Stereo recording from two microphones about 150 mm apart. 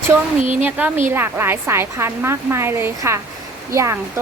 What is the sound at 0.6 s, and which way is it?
A woman's voice, 10° right (ahead or behind).